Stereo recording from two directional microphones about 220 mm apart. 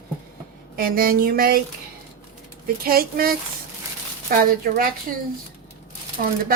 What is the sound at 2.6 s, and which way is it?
Speech, 40° right (ahead or behind).